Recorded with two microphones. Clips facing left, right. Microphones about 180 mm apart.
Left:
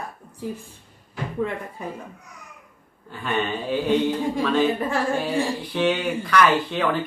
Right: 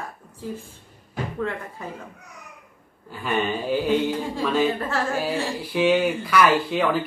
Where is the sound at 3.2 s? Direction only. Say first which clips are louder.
Right 1 dB; 10° right (ahead or behind).